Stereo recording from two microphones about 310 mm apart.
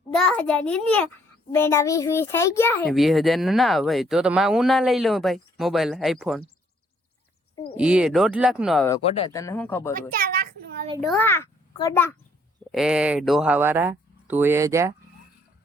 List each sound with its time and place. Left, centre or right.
0.1 s a child's voice: centre
7.8 s speech: centre
8.9 s a child's voice: centre
9.9 s a sound: right
11.0 s a child's voice: centre
12.7 s speech: centre